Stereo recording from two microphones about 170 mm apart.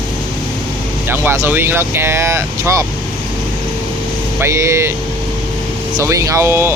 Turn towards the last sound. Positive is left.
turn(degrees=-15)  # may be behind; listen again after turning